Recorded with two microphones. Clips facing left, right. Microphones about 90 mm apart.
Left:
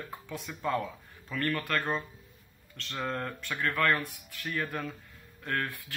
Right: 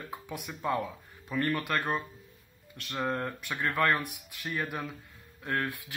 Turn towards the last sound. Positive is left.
turn(degrees=-15)  # may be behind; listen again after turning